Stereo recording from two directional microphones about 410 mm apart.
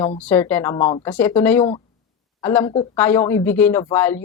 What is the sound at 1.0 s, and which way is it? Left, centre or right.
A woman's voice, centre.